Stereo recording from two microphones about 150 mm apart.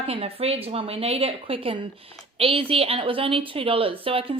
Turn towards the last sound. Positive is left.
turn(degrees=-40)  # may be behind; listen again after turning